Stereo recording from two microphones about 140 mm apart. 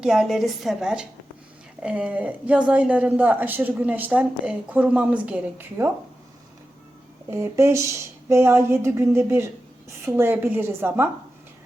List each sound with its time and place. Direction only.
0.0 s a woman's voice: 5° right (ahead or behind)
7.3 s speech: 20° right (ahead or behind)